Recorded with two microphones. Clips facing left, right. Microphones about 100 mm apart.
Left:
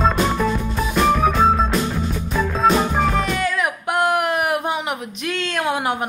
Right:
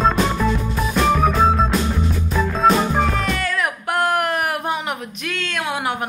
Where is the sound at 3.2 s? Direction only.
15° left (ahead or behind).